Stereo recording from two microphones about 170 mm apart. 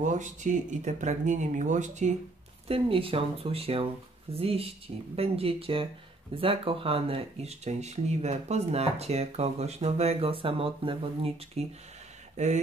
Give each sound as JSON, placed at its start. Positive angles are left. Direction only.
{"t": 0.0, "sound": "speech", "side_deg": -45}
{"t": 2.7, "sound": "speech", "side_deg": -35}